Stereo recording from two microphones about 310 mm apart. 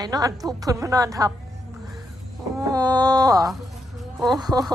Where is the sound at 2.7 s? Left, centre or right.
Centre.